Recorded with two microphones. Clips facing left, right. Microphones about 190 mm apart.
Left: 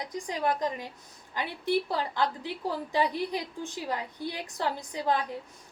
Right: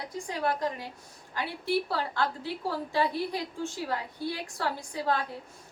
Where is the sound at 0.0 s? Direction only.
20° left (ahead or behind).